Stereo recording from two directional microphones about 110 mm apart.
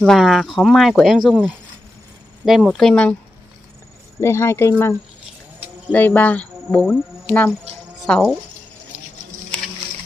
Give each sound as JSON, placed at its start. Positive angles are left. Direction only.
{"t": 0.0, "sound": "speech", "side_deg": 0}
{"t": 4.2, "sound": "speech", "side_deg": 25}
{"t": 8.0, "sound": "speech", "side_deg": 0}